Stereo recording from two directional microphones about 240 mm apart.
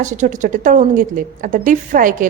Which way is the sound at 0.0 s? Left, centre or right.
Right.